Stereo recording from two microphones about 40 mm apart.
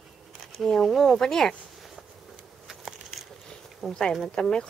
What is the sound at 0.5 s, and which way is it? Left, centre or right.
Speech, centre.